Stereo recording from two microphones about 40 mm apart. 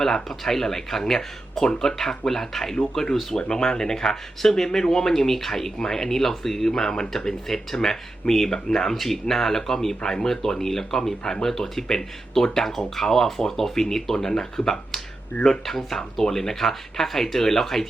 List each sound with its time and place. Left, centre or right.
0.0 s speech: centre
11.2 s speech: left
11.4 s speech: centre